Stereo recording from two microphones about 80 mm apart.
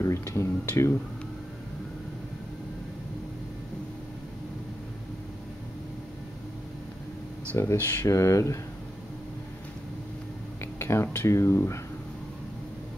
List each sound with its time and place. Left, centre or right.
0.0 s a sound: left
7.5 s speech: left
10.6 s speech: left